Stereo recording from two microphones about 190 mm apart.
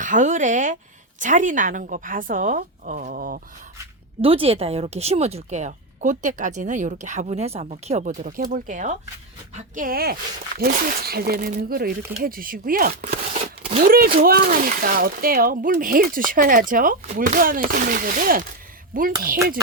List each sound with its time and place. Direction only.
0.0 s speech: 40° right (ahead or behind)
4.2 s speech: 30° right (ahead or behind); by 19.1 s 45° right (ahead or behind)